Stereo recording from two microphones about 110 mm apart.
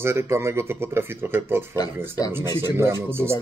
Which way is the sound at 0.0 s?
25° right (ahead or behind).